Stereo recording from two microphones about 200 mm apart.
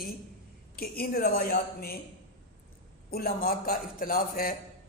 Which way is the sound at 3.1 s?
50° left (ahead or behind).